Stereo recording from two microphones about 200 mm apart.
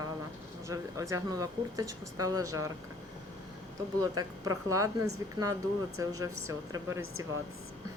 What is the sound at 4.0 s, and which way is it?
Speech, 20° right (ahead or behind).